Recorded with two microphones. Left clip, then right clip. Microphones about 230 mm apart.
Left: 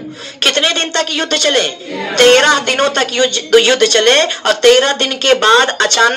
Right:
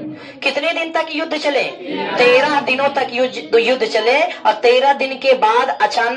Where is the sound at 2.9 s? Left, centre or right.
Left.